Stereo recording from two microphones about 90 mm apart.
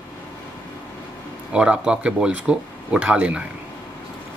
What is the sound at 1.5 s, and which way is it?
Speech, 10° right (ahead or behind).